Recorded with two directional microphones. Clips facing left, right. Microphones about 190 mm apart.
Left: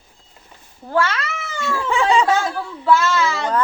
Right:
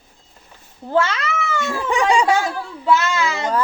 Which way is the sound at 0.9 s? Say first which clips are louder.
Right 1 dB; 20° right (ahead or behind).